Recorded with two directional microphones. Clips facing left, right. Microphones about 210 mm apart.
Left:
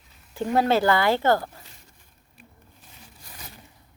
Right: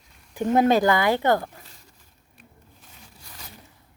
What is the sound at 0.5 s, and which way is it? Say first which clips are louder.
Speech: right 2 dB; 15° right (ahead or behind).